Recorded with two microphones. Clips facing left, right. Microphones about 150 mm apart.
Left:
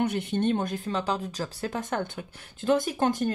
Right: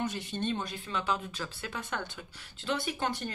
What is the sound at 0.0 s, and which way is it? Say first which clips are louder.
Speech: left 8 dB; 60° left (ahead or behind).